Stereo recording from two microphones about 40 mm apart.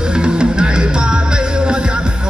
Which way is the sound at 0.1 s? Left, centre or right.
Right.